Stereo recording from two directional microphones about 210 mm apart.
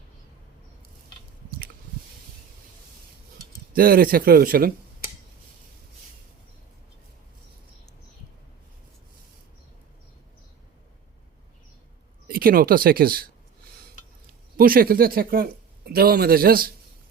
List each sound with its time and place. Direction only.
3.8 s speech: 45° right (ahead or behind)
12.3 s speech: 45° right (ahead or behind)
14.5 s speech: 45° right (ahead or behind)